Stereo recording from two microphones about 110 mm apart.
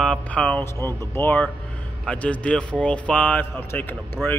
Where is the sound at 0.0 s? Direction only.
10° left (ahead or behind).